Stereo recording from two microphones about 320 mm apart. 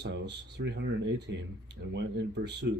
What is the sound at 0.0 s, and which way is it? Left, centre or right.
Speech, right.